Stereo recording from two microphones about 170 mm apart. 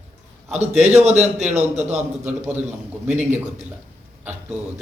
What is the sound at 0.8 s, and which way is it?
A man's voice, 40° right (ahead or behind).